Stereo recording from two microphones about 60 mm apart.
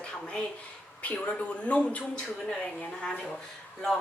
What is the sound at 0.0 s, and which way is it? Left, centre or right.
A man's voice, centre.